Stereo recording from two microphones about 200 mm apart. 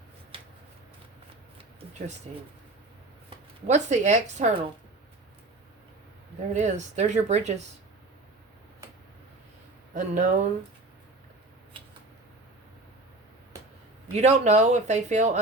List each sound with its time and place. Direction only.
0.3 s shuffling cards: 25° right (ahead or behind)
2.3 s speech: 30° right (ahead or behind)
6.5 s speech: 35° right (ahead or behind)
9.9 s speech: 40° right (ahead or behind)
11.7 s a sound: 25° right (ahead or behind)
14.1 s speech: 35° right (ahead or behind)